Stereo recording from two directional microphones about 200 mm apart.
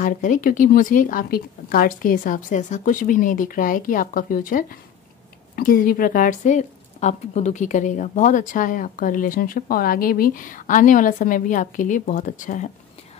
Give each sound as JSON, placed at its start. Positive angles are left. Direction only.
{"t": 0.0, "sound": "a woman's voice", "side_deg": 40}